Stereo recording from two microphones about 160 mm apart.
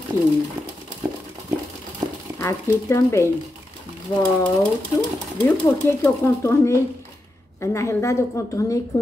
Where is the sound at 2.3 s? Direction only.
20° left (ahead or behind).